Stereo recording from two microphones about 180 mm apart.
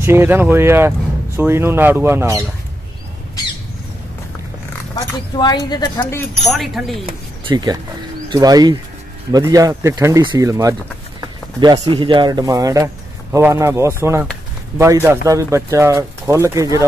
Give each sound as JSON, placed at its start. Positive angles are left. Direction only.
{"t": 0.0, "sound": "speech", "side_deg": -15}
{"t": 4.9, "sound": "speech", "side_deg": 25}
{"t": 6.4, "sound": "speech", "side_deg": 0}
{"t": 7.1, "sound": "speech", "side_deg": -25}
{"t": 11.8, "sound": "speech", "side_deg": -25}